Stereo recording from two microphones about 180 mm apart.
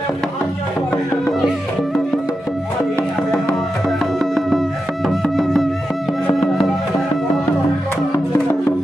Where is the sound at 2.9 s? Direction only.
5° left (ahead or behind).